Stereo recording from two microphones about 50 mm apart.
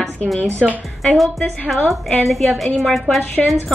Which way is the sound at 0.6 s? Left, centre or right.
Centre.